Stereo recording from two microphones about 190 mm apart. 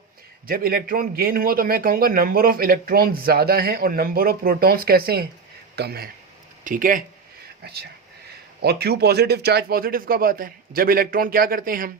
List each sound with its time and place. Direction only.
0.4 s a man's voice: 50° right (ahead or behind)
6.7 s a man's voice: 45° right (ahead or behind)
7.6 s a man's voice: 60° right (ahead or behind)